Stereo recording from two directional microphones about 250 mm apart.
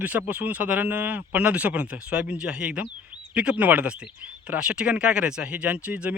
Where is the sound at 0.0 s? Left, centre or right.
Centre.